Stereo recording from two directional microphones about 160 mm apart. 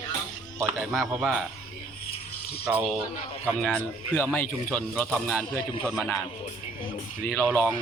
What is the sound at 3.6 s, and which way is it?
Speech, 10° left (ahead or behind).